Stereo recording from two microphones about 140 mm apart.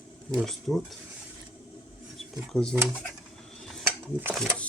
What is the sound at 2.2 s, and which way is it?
Speech, 5° left (ahead or behind).